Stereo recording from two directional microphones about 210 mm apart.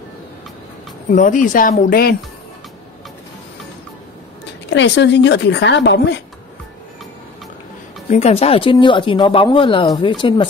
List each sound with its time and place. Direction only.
1.1 s speech: 40° left (ahead or behind)
4.6 s a woman's voice: 55° left (ahead or behind)
8.1 s speech: 30° left (ahead or behind)